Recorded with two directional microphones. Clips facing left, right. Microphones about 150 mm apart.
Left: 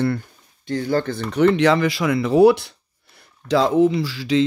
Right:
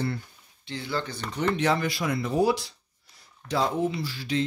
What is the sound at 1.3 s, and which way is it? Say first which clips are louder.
Speech: left 9 dB; 80° left.